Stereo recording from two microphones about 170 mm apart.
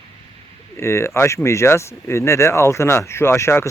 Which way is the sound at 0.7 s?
15° left (ahead or behind).